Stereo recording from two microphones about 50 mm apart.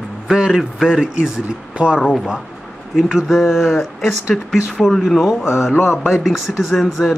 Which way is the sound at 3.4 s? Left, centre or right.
Centre.